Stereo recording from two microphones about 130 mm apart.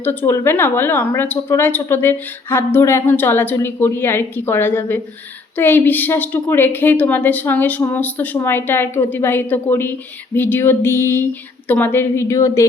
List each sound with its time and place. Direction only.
0.0 s a woman's voice: 15° left (ahead or behind)